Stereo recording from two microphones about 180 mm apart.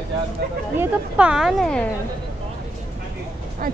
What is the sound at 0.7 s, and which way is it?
A woman's voice, 5° right (ahead or behind).